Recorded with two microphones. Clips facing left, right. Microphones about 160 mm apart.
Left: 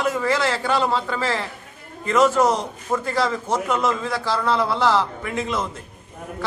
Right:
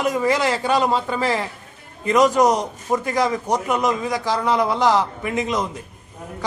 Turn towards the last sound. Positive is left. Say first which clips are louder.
# right 3 dB
turn(degrees=-15)  # may be behind; listen again after turning